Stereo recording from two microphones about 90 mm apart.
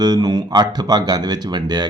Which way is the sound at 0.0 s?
50° right (ahead or behind).